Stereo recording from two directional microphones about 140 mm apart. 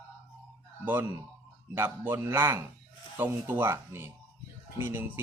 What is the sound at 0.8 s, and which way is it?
Speech, 15° right (ahead or behind).